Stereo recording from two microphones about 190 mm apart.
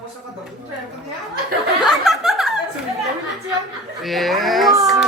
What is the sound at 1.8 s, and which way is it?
Chuckle, centre (ahead or behind).